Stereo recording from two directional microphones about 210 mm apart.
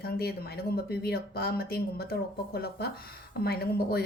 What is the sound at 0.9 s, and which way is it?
A woman's voice, 45° left (ahead or behind).